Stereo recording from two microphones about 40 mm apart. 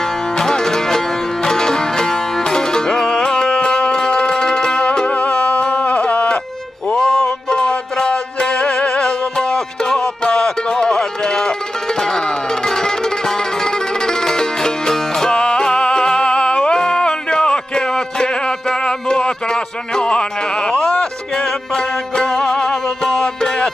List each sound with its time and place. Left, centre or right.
0.4 s music: centre
6.9 s music: centre